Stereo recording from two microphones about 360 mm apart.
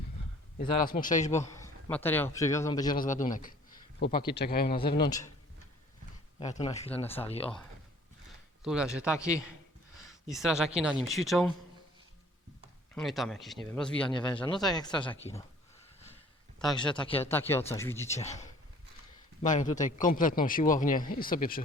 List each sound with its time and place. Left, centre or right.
0.6 s a man's voice: left
1.5 s a man's voice: centre
3.0 s a man's voice: left
4.8 s speech: centre
6.4 s speech: centre
8.6 s speech: centre
12.9 s speech: centre
16.7 s a man's voice: centre